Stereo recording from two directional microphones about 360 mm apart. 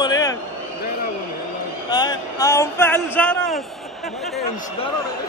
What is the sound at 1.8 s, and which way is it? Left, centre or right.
Speech, centre.